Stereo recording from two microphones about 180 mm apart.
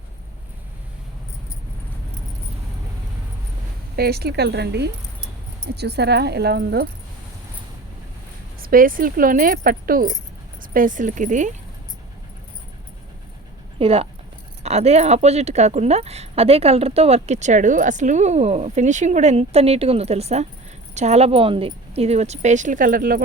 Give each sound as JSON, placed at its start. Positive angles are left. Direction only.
{"t": 3.9, "sound": "speech", "side_deg": -60}
{"t": 8.6, "sound": "speech", "side_deg": -50}
{"t": 13.7, "sound": "speech", "side_deg": -35}